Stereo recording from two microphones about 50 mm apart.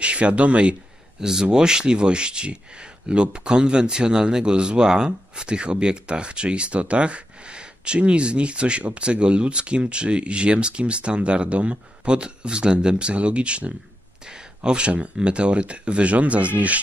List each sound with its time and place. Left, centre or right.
0.0 s speech: right
1.2 s speech: centre